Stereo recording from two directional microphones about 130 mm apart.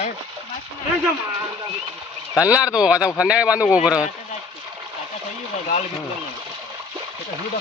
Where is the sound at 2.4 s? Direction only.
10° right (ahead or behind).